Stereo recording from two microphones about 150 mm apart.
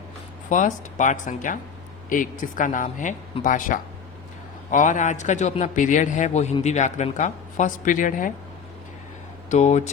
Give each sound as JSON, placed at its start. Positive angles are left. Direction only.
{"t": 0.5, "sound": "a man's voice", "side_deg": 60}
{"t": 9.5, "sound": "a man's voice", "side_deg": 50}